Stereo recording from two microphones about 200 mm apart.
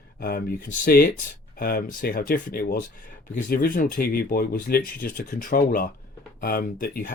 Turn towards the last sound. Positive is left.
turn(degrees=45)  # may be behind; listen again after turning